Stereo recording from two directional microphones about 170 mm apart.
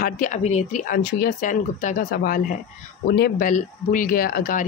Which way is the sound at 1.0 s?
60° left (ahead or behind).